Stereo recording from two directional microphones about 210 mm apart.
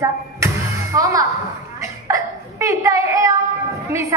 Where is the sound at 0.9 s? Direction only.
15° right (ahead or behind).